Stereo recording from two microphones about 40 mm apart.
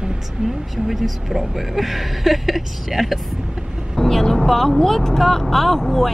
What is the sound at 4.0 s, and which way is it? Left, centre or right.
Speech, centre.